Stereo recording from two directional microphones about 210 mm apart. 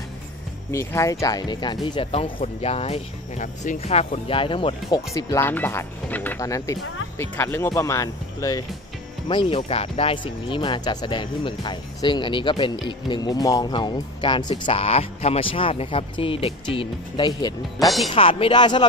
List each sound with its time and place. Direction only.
0.7 s speech: 15° left (ahead or behind)
17.7 s speech: centre (ahead or behind)
18.1 s speech: 25° left (ahead or behind)